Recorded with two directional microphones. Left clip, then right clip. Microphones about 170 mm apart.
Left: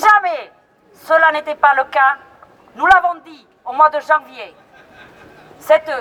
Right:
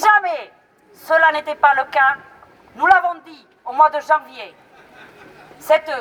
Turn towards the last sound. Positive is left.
turn(degrees=-10)  # may be behind; listen again after turning